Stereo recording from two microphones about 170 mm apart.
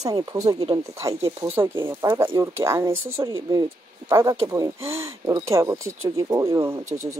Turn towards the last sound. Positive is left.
turn(degrees=-15)  # may be behind; listen again after turning